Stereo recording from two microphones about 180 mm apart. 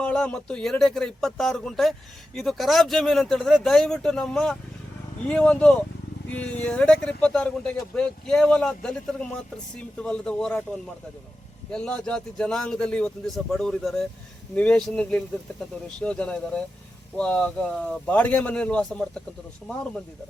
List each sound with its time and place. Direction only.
0.0 s a man's voice: 5° left (ahead or behind)